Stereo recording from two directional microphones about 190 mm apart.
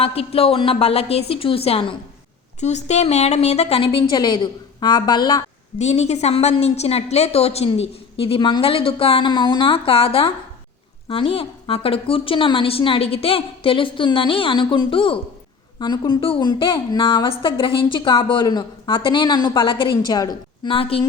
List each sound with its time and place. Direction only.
0.0 s a woman's voice: 30° left (ahead or behind)
5.8 s a woman's voice: 35° left (ahead or behind)